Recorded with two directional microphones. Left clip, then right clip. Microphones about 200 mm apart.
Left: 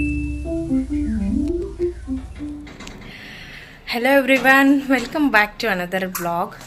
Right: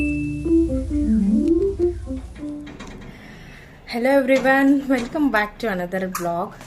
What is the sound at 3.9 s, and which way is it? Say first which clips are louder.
A woman's voice: left 2 dB; 10° right (ahead or behind).